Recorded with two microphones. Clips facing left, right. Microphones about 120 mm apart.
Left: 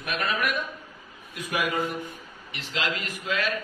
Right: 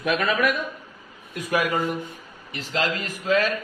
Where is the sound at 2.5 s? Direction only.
40° right (ahead or behind).